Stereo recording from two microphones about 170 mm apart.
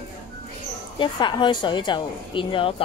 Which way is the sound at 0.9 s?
30° left (ahead or behind).